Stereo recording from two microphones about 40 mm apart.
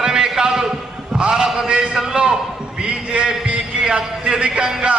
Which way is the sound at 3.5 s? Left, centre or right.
Centre.